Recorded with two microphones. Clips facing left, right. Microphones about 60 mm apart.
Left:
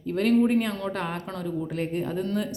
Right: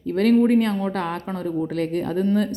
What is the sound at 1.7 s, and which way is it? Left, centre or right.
Speech, right.